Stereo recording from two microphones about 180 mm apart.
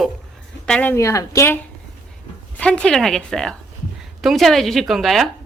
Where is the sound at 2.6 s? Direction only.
5° left (ahead or behind).